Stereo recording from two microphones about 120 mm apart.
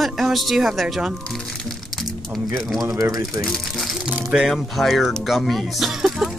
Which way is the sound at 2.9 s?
25° right (ahead or behind).